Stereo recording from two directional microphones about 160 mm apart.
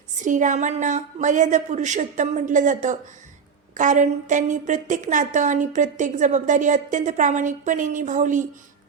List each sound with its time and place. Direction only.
0.2 s a woman's voice: 50° right (ahead or behind)